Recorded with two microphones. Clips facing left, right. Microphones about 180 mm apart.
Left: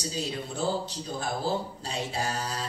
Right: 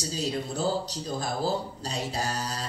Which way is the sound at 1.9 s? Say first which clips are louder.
Even; 40° right (ahead or behind).